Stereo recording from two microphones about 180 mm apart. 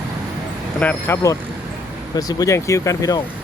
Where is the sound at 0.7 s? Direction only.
10° left (ahead or behind).